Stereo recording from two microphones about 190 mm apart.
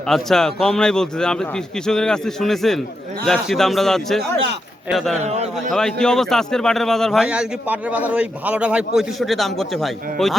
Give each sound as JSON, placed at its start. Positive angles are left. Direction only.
{"t": 0.1, "sound": "a man's voice", "side_deg": 0}
{"t": 5.2, "sound": "a man's voice", "side_deg": -35}
{"t": 5.7, "sound": "a man's voice", "side_deg": 5}